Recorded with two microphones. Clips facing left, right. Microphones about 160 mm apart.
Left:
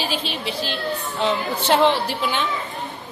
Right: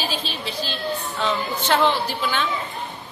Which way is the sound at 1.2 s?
30° left (ahead or behind).